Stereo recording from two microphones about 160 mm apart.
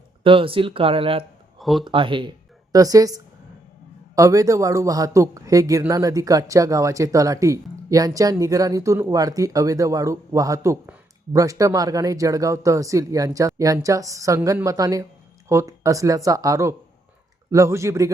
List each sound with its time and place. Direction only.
0.2 s speech: 35° right (ahead or behind)
1.5 s a sound: centre (ahead or behind)
1.8 s speech: 30° right (ahead or behind)